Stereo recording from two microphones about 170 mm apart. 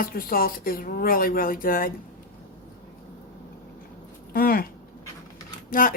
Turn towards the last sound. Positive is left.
turn(degrees=55)  # may be behind; listen again after turning